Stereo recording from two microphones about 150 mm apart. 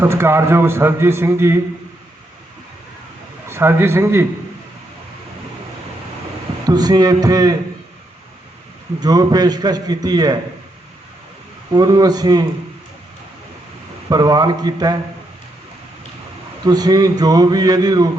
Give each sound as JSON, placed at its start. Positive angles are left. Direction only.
{"t": 0.0, "sound": "a man's voice", "side_deg": -15}
{"t": 3.5, "sound": "a man's voice", "side_deg": -15}
{"t": 6.7, "sound": "speech", "side_deg": -25}
{"t": 9.0, "sound": "speech", "side_deg": -25}
{"t": 11.7, "sound": "speech", "side_deg": -25}
{"t": 14.1, "sound": "speech", "side_deg": -25}
{"t": 16.6, "sound": "speech", "side_deg": -25}